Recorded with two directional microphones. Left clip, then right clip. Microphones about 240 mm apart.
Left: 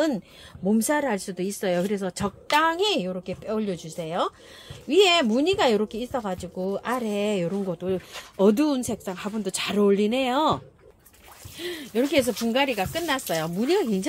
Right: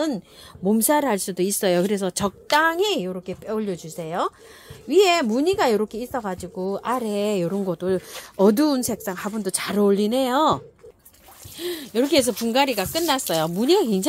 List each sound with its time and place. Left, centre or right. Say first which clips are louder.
0.7 s speech: right 4 dB; right